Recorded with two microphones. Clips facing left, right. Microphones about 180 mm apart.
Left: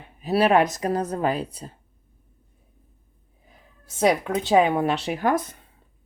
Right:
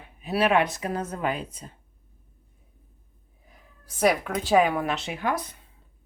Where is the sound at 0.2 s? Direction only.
35° left (ahead or behind).